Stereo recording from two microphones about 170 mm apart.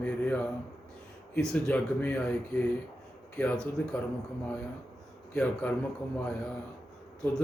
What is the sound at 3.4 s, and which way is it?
Speech, 5° left (ahead or behind).